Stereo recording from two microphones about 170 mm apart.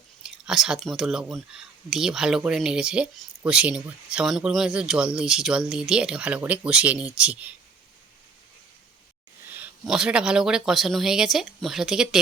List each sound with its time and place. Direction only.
0.2 s speech: 5° right (ahead or behind)
9.8 s speech: 5° right (ahead or behind)